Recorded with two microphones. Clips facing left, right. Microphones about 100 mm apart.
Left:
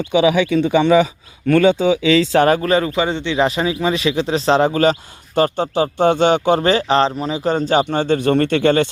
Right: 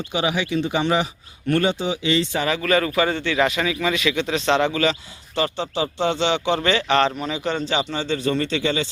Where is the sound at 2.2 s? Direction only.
90° left.